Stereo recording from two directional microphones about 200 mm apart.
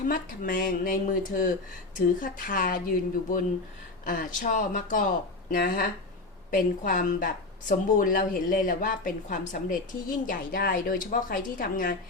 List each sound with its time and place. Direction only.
0.1 s speech: 45° left (ahead or behind)
4.0 s speech: 45° left (ahead or behind)